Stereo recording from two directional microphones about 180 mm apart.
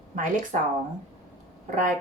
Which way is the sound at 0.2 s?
45° right (ahead or behind).